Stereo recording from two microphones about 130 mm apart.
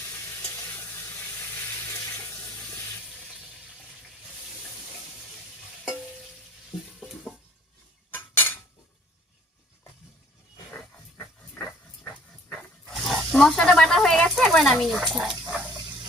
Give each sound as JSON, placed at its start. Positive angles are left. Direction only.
{"t": 0.0, "sound": "sizzle", "side_deg": 20}
{"t": 2.2, "sound": "water", "side_deg": 20}
{"t": 8.1, "sound": "cutlery", "side_deg": 15}
{"t": 11.2, "sound": "dog", "side_deg": 20}
{"t": 12.1, "sound": "wild animals", "side_deg": 5}
{"t": 15.7, "sound": "dog", "side_deg": -35}